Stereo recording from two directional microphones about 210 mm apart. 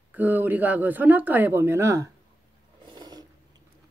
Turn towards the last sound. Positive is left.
turn(degrees=-20)  # may be behind; listen again after turning